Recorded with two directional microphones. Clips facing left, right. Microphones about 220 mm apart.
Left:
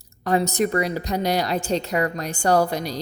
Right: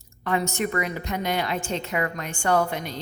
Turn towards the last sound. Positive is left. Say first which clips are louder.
# left 4 dB
turn(degrees=35)  # may be behind; listen again after turning